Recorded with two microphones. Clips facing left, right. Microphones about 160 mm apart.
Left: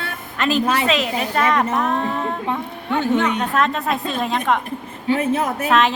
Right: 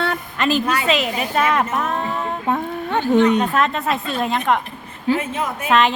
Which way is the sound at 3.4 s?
Centre (ahead or behind).